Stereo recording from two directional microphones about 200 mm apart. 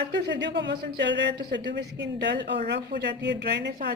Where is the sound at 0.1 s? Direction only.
60° right (ahead or behind).